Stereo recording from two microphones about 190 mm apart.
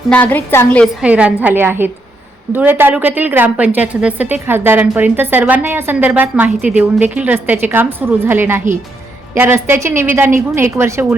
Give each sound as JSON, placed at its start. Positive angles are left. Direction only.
{"t": 0.1, "sound": "a woman's voice", "side_deg": 10}
{"t": 1.0, "sound": "a woman's voice", "side_deg": -5}